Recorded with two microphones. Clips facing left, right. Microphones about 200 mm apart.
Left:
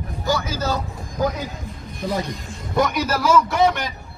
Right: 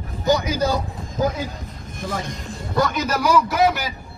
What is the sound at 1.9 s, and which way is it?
Speech, 50° right (ahead or behind).